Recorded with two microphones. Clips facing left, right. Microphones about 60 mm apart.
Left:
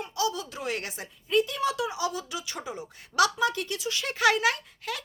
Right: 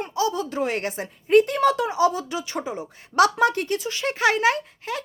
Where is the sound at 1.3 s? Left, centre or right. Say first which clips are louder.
Right 9 dB; right.